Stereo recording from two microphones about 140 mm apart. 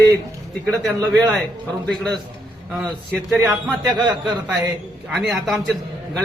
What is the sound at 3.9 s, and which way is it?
Speech, 35° right (ahead or behind).